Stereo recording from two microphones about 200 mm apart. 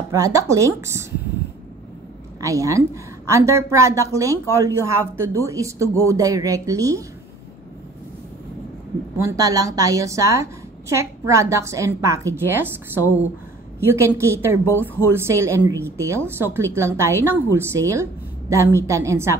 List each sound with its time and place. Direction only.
0.1 s a woman's voice: 15° right (ahead or behind)
2.4 s a woman's voice: 15° right (ahead or behind)
9.2 s a woman's voice: 15° right (ahead or behind)